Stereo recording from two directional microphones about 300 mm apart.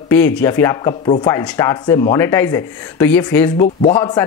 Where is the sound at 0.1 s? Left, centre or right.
Centre.